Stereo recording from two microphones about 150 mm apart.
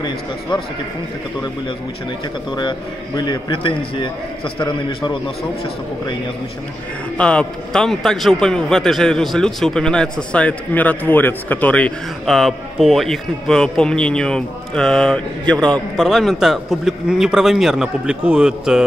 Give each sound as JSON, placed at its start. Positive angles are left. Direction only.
{"t": 3.2, "sound": "a man's voice", "side_deg": 30}
{"t": 7.2, "sound": "a man's voice", "side_deg": 5}